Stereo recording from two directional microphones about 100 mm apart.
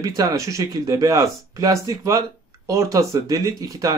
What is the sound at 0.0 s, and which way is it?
Speech, 35° right (ahead or behind).